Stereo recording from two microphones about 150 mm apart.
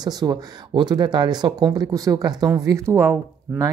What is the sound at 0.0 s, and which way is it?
Speech, 25° right (ahead or behind).